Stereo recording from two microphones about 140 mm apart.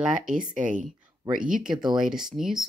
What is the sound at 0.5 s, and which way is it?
Speech, 65° right (ahead or behind).